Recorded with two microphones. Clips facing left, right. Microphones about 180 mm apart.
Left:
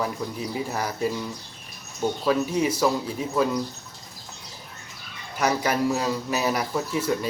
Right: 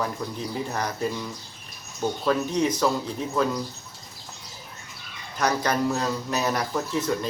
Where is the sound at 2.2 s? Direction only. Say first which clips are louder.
Even; 5° left (ahead or behind).